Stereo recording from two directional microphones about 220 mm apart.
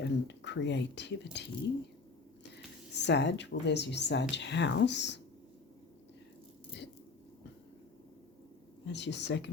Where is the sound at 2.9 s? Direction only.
50° left (ahead or behind).